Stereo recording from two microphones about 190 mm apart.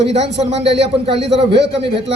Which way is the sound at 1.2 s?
65° right (ahead or behind).